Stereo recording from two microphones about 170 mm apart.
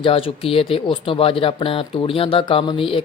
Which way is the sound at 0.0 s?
35° left (ahead or behind).